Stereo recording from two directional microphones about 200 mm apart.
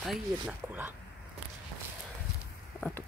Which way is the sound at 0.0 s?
5° right (ahead or behind).